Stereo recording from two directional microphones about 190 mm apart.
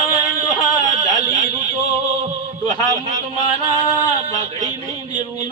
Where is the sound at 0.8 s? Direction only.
40° right (ahead or behind).